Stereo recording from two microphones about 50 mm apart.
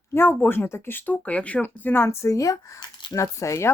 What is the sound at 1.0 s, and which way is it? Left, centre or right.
Speech, left.